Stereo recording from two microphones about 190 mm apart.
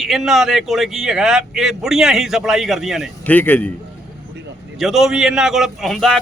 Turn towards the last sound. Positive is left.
turn(degrees=0)  # may be behind; listen again after turning